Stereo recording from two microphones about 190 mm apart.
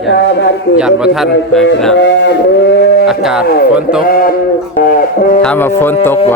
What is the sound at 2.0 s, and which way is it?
Sheep, 70° left (ahead or behind).